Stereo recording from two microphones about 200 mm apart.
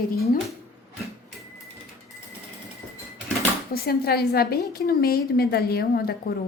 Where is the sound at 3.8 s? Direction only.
50° left (ahead or behind).